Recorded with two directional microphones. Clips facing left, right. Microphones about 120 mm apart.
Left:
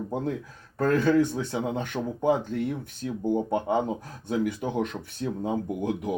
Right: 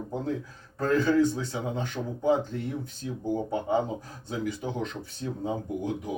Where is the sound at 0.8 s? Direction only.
55° left (ahead or behind).